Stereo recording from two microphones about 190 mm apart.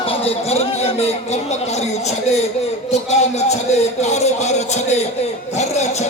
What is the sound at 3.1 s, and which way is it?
Speech, 35° left (ahead or behind).